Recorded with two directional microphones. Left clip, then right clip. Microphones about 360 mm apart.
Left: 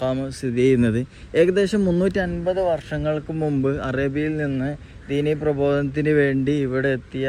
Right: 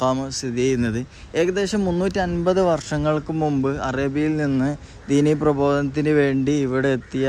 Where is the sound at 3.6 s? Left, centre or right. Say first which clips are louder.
Even; centre.